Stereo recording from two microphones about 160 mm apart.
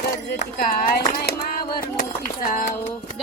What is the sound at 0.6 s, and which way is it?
Speech, 60° left (ahead or behind).